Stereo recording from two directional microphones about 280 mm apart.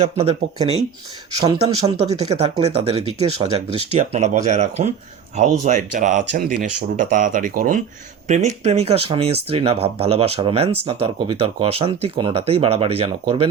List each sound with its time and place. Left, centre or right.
0.0 s speech: right